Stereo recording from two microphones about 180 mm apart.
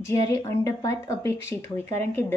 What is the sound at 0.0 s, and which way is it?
A woman's voice, 20° left (ahead or behind).